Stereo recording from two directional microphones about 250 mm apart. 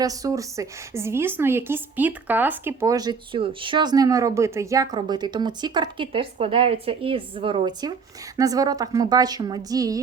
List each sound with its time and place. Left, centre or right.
0.0 s a woman's voice: centre